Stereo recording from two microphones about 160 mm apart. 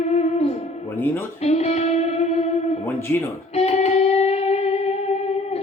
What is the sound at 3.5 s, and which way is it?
Music, 40° left (ahead or behind).